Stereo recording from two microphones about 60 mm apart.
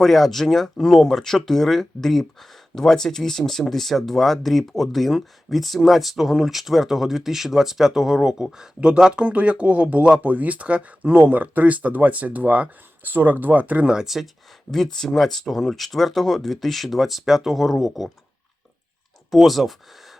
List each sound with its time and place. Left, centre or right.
0.0 s speech: centre; by 13.8 s right
13.8 s speech: centre
14.7 s speech: centre
19.3 s speech: centre